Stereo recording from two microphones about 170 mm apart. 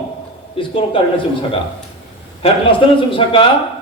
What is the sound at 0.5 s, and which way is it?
A man's voice, 30° left (ahead or behind).